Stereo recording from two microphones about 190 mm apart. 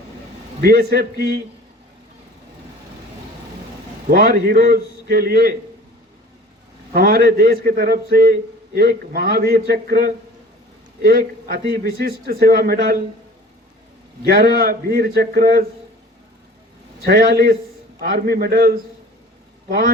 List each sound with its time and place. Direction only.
0.6 s a man's voice: 55° right (ahead or behind)
4.1 s a man's voice: 55° right (ahead or behind)
6.9 s a man's voice: 55° right (ahead or behind)
14.3 s a man's voice: 55° right (ahead or behind)
17.1 s a man's voice: 55° right (ahead or behind)